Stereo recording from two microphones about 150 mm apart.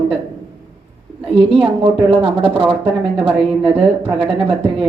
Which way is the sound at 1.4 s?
35° right (ahead or behind).